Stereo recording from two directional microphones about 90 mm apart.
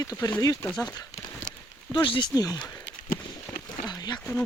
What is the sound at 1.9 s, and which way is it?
Speech, 60° left (ahead or behind).